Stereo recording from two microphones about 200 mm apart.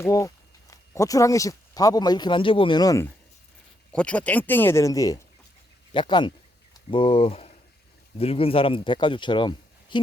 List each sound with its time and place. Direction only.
0.0 s speech: 15° left (ahead or behind)
3.9 s speech: 5° left (ahead or behind); by 10.0 s 25° left (ahead or behind)